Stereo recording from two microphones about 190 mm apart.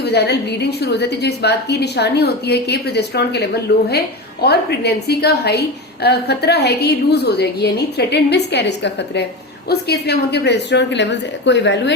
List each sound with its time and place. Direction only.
0.0 s a woman's voice: 60° left (ahead or behind)